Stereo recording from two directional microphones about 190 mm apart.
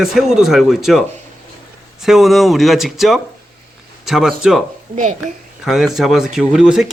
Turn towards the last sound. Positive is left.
turn(degrees=-5)  # may be behind; listen again after turning